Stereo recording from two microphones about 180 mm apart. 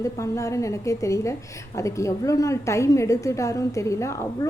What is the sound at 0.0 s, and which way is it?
A woman's voice, 15° left (ahead or behind).